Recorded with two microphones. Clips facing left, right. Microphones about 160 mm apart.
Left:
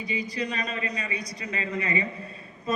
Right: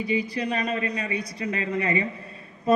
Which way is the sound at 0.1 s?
55° right (ahead or behind).